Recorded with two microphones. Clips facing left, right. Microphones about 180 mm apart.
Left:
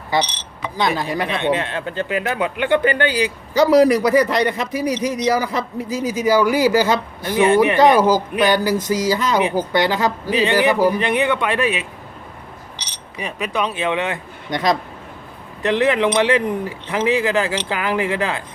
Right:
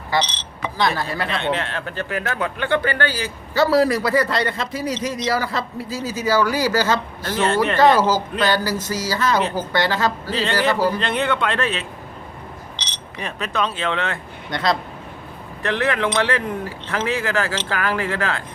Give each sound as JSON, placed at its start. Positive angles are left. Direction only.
{"t": 0.1, "sound": "speech", "side_deg": 15}